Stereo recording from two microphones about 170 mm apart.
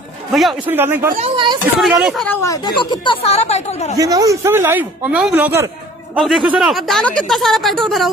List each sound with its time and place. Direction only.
0.3 s speech: centre (ahead or behind)
0.7 s speech: 10° right (ahead or behind)
1.3 s speech: 30° right (ahead or behind)
1.8 s speech: centre (ahead or behind)
2.4 s speech: 20° left (ahead or behind); by 3.9 s 40° left (ahead or behind)
4.0 s speech: 20° right (ahead or behind)
6.1 s speech: centre (ahead or behind)